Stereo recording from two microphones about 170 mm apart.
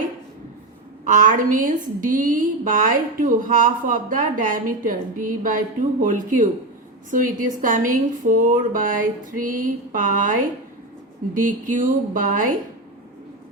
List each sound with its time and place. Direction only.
1.0 s a woman's voice: 50° right (ahead or behind)
11.3 s a woman's voice: 50° right (ahead or behind)